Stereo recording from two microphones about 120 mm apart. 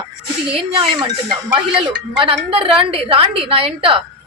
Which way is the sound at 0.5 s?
50° right (ahead or behind).